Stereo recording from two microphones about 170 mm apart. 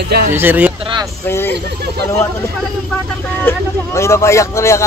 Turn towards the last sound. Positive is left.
turn(degrees=15)  # may be behind; listen again after turning